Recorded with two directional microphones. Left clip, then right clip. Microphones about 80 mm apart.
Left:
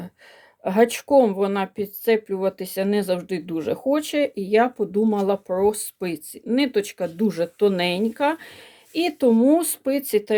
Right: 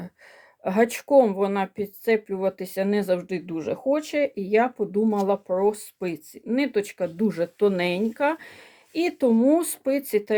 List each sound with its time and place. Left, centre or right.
0.6 s speech: left
3.4 s speech: left
4.2 s speech: left